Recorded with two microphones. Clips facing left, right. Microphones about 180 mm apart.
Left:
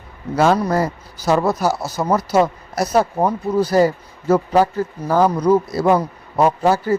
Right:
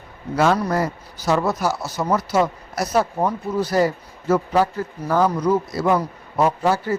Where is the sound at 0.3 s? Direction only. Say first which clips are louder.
Left 3 dB; 30° left (ahead or behind).